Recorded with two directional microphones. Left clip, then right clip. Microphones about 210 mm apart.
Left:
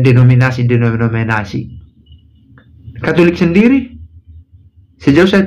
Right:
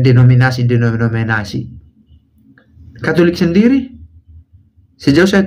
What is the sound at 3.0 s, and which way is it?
Speech, 15° right (ahead or behind).